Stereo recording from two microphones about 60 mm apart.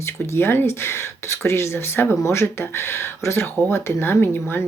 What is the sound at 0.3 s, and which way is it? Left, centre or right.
Speech, left.